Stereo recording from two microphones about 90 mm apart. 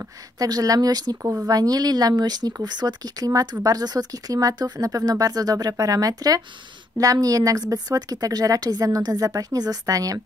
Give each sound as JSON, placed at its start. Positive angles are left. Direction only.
{"t": 0.4, "sound": "a woman's voice", "side_deg": -45}